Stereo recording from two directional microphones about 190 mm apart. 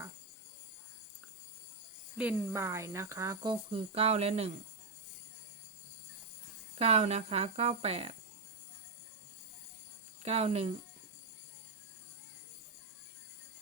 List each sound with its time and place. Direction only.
2.1 s speech: 10° right (ahead or behind); by 4.5 s 35° right (ahead or behind)
6.7 s speech: 35° right (ahead or behind)
10.2 s speech: 35° right (ahead or behind)